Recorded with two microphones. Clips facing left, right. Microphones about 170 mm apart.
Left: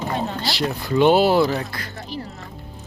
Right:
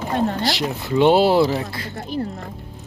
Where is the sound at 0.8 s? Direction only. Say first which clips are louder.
Right 1 dB; 25° right (ahead or behind).